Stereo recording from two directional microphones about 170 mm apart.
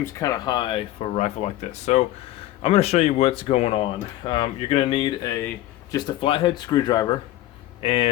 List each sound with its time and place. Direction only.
0.0 s speech: 20° left (ahead or behind)